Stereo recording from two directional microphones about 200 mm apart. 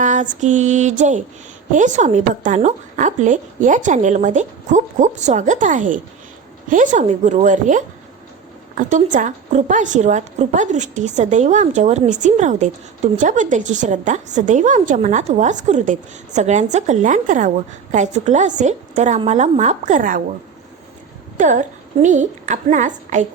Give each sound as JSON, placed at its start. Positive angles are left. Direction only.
{"t": 0.0, "sound": "a woman's voice", "side_deg": -40}
{"t": 21.3, "sound": "a woman's voice", "side_deg": -40}